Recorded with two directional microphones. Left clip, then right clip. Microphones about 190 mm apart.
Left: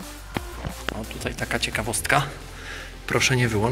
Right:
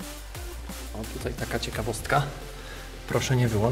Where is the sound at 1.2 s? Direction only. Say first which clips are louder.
Left 5 dB; 5° left (ahead or behind).